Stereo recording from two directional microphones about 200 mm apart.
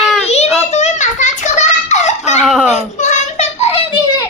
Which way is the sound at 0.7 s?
35° left (ahead or behind).